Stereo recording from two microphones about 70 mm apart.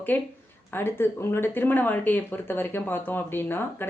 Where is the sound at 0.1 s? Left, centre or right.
Left.